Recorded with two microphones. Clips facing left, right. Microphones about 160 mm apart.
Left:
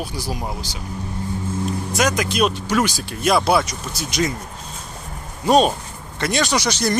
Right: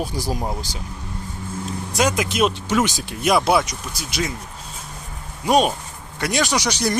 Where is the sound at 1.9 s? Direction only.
25° right (ahead or behind).